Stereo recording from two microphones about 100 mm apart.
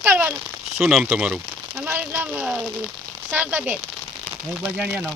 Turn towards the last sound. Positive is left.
turn(degrees=-10)  # may be behind; listen again after turning